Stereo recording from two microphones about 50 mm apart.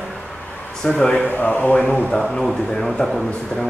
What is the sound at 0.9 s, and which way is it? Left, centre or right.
Speech, left.